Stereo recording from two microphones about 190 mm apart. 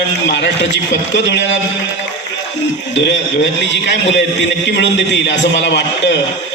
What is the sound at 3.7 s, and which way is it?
A man's voice, 70° left (ahead or behind).